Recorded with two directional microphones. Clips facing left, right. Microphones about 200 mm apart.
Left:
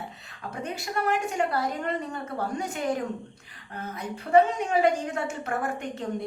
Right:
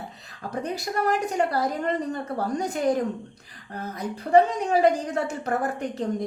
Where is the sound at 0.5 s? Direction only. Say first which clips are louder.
Right 3 dB; 40° right (ahead or behind).